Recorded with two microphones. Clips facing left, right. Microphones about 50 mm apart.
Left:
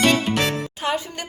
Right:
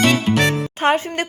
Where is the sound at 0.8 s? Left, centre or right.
Right.